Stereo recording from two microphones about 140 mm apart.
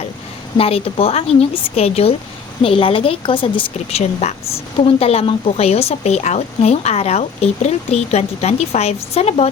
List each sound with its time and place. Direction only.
0.5 s a woman's voice: 45° left (ahead or behind)